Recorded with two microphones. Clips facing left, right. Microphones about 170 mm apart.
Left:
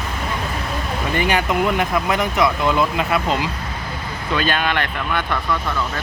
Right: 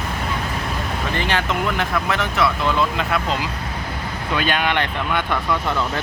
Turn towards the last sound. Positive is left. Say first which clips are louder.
# right 1 dB
turn(degrees=-20)  # may be behind; listen again after turning